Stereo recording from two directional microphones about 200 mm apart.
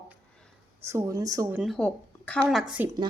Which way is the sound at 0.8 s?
15° right (ahead or behind).